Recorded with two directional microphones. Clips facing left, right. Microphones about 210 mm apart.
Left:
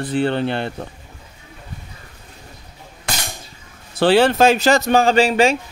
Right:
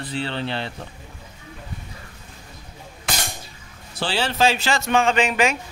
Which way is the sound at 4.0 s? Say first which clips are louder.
Left 9 dB; 55° left (ahead or behind).